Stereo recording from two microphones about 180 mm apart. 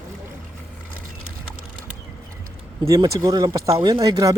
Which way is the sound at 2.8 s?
20° right (ahead or behind).